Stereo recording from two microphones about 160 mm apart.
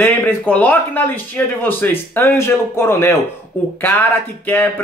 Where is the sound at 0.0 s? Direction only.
10° left (ahead or behind).